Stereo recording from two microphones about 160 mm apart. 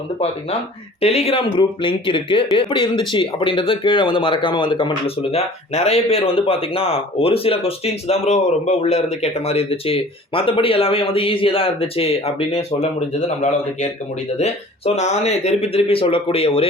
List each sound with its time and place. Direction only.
1.0 s speech: 40° left (ahead or behind)